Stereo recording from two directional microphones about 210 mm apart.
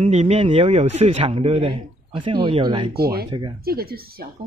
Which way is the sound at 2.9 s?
45° right (ahead or behind).